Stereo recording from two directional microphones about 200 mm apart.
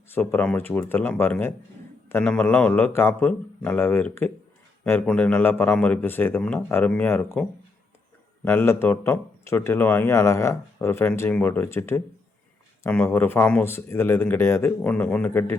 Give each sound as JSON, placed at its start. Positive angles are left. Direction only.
{"t": 0.1, "sound": "speech", "side_deg": 10}
{"t": 8.4, "sound": "speech", "side_deg": 10}